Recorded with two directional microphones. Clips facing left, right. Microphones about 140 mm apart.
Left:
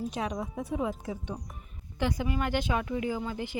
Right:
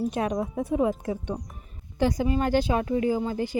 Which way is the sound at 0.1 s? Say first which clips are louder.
Right 6 dB; 55° right (ahead or behind).